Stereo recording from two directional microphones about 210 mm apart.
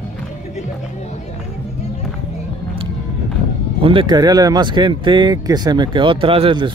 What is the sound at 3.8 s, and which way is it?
Speech, 25° right (ahead or behind).